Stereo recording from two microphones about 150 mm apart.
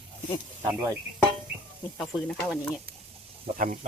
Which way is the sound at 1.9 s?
5° left (ahead or behind).